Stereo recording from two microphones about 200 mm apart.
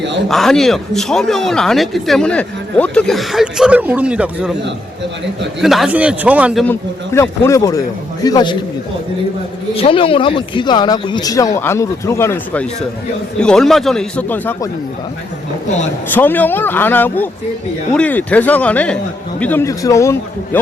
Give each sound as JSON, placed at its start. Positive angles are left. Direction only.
{"t": 0.3, "sound": "speech", "side_deg": 0}
{"t": 5.6, "sound": "speech", "side_deg": 0}
{"t": 6.7, "sound": "a man's voice", "side_deg": 15}
{"t": 9.7, "sound": "speech", "side_deg": 25}
{"t": 16.0, "sound": "a man's voice", "side_deg": 10}